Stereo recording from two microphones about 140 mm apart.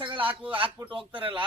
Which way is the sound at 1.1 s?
40° right (ahead or behind).